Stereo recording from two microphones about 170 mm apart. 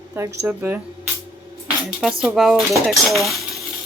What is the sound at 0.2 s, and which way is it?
Speech, 10° right (ahead or behind).